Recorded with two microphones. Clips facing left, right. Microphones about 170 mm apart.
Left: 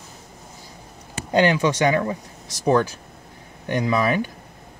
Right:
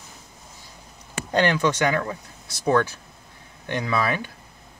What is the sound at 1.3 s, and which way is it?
Speech, 15° left (ahead or behind).